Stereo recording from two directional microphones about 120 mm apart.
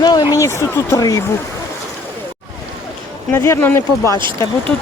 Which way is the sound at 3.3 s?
20° left (ahead or behind).